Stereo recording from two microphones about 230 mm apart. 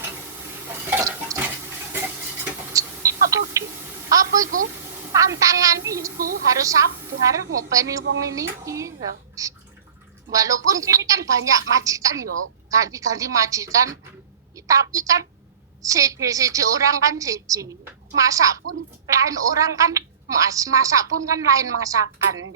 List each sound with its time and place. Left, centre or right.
0.7 s stir: centre
4.1 s a woman's voice: centre
4.5 s a woman's voice: right
5.1 s a woman's voice: centre
6.1 s a woman's voice: right
6.5 s a woman's voice: centre